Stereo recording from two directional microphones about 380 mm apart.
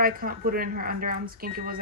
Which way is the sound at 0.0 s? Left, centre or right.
Right.